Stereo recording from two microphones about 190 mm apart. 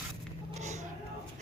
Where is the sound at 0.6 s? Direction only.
35° right (ahead or behind).